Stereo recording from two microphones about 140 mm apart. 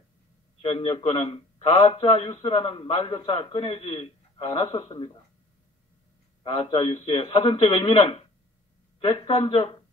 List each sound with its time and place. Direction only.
0.6 s a man's voice: 35° left (ahead or behind)
6.4 s a man's voice: 40° left (ahead or behind)